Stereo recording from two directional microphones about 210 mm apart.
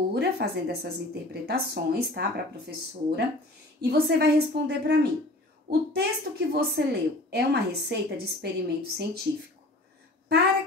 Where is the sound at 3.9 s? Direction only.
55° right (ahead or behind).